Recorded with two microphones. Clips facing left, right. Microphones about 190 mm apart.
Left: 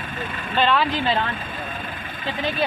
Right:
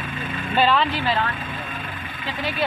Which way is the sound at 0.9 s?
25° left (ahead or behind).